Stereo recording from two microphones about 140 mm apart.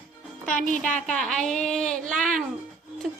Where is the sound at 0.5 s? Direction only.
65° left (ahead or behind).